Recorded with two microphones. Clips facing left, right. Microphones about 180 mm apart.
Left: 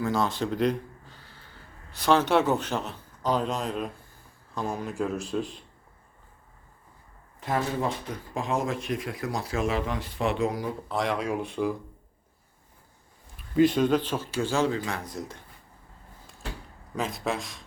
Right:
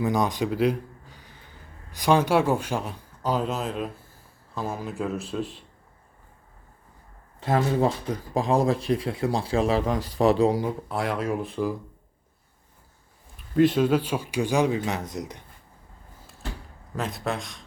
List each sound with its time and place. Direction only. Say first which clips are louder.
0.0 s a man's voice: right 2 dB; 15° right (ahead or behind)
7.3 s speech: right 5 dB; 30° right (ahead or behind)
10.8 s a man's voice: right 1 dB; 5° right (ahead or behind)
13.6 s speech: right 1 dB; centre (ahead or behind); by 15.4 s 20° right (ahead or behind)
16.9 s a man's voice: even; centre (ahead or behind)